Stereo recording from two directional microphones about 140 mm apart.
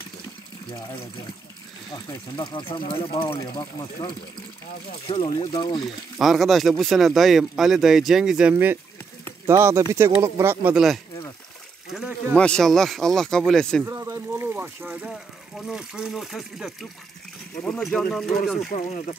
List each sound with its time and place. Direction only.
2.0 s speech: 30° left (ahead or behind)
6.1 s speech: centre (ahead or behind)
11.9 s a sound: 5° right (ahead or behind)
12.4 s speech: 5° left (ahead or behind)
13.8 s a sound: 20° right (ahead or behind)
15.0 s speech: centre (ahead or behind)
17.9 s speech: centre (ahead or behind)
18.7 s speech: 55° left (ahead or behind)